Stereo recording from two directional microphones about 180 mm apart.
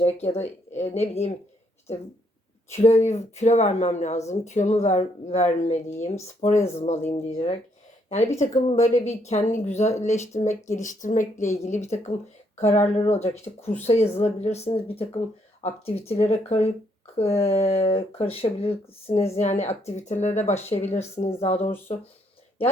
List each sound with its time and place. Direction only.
0.0 s speech: 35° left (ahead or behind)
2.7 s speech: 40° left (ahead or behind)